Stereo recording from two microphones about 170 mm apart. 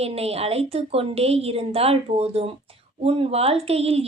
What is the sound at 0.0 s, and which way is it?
A woman's voice, 35° right (ahead or behind).